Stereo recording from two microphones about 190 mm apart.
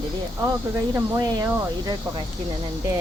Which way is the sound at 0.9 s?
20° right (ahead or behind).